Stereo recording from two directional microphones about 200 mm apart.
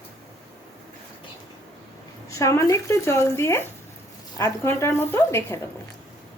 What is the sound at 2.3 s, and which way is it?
Speech, 15° left (ahead or behind).